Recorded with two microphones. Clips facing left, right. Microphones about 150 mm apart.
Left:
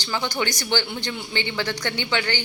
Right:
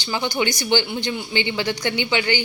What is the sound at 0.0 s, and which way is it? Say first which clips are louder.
Speech: right 3 dB; 15° right (ahead or behind).